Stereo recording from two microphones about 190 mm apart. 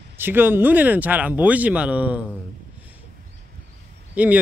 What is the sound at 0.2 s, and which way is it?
Speech, 10° right (ahead or behind).